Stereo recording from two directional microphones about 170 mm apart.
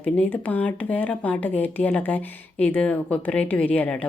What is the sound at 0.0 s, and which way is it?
Speech, 10° left (ahead or behind).